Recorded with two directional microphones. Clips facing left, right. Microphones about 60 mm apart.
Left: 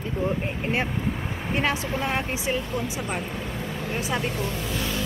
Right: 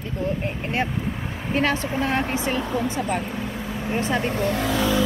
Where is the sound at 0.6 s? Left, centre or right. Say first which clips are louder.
Even; centre.